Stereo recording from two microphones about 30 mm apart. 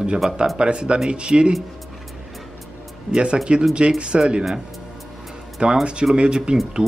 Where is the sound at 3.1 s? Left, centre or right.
Right.